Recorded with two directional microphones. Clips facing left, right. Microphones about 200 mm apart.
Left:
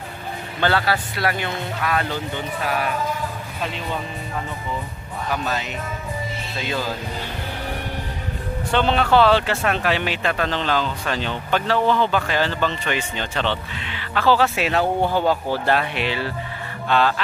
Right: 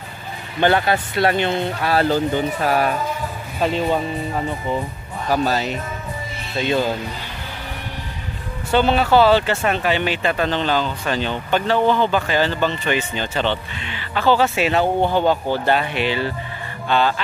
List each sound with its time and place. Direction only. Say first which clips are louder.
0.6 s speech: right 4 dB; 20° right (ahead or behind); by 4.0 s 35° right (ahead or behind)
5.3 s speech: right 7 dB; 35° right (ahead or behind)
6.6 s speech: right 7 dB; 25° right (ahead or behind)
8.7 s speech: right 2 dB; 5° right (ahead or behind)